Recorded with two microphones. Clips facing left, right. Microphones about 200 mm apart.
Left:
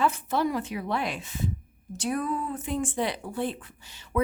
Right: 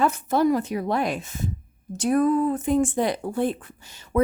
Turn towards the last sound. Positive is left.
turn(degrees=-45)  # may be behind; listen again after turning